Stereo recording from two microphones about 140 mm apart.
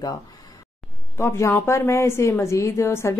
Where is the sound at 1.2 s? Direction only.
20° left (ahead or behind).